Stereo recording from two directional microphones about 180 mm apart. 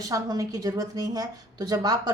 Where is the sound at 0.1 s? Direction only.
20° right (ahead or behind).